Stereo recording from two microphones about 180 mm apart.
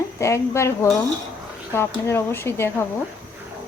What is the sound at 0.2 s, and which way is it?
Speech, 15° left (ahead or behind).